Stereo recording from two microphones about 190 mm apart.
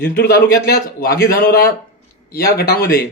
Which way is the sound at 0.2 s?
55° left (ahead or behind).